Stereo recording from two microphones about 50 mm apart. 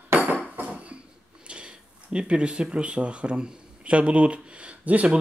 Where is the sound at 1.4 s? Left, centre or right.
Right.